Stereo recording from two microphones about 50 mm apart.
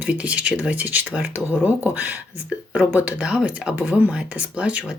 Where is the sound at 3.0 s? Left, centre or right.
Right.